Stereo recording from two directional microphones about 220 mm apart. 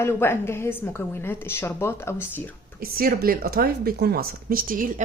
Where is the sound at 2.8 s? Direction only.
40° right (ahead or behind).